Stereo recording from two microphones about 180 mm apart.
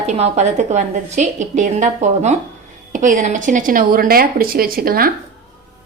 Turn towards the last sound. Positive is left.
turn(degrees=-55)  # may be behind; listen again after turning